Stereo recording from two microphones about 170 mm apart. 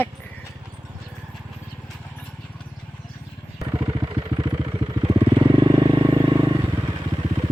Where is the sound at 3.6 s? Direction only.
25° right (ahead or behind).